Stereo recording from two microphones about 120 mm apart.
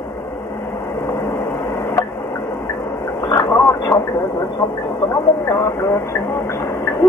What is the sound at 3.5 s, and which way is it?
Radio, 35° left (ahead or behind).